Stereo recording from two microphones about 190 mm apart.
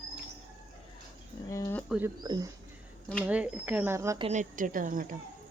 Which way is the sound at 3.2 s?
5° right (ahead or behind).